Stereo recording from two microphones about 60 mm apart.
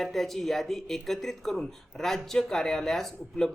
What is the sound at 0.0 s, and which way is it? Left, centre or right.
Speech, centre.